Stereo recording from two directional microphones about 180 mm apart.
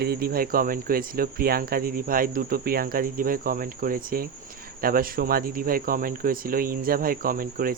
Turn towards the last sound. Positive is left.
turn(degrees=-50)  # may be behind; listen again after turning